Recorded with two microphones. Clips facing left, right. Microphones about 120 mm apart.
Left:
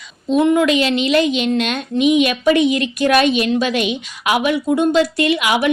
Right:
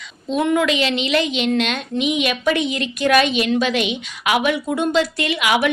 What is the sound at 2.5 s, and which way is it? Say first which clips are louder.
Speech: left 6 dB; 30° right (ahead or behind).